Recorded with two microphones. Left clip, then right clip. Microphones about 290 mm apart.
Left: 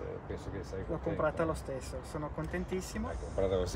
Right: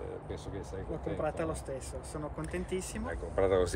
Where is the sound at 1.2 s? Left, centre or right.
Centre.